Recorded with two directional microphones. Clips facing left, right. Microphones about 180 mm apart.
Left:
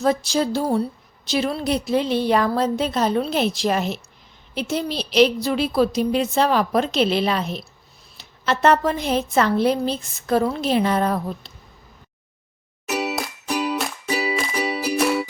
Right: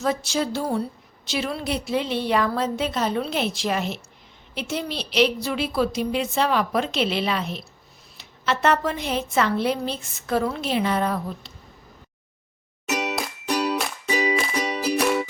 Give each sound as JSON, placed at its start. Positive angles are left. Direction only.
{"t": 0.0, "sound": "a woman's voice", "side_deg": 35}
{"t": 12.9, "sound": "music", "side_deg": 5}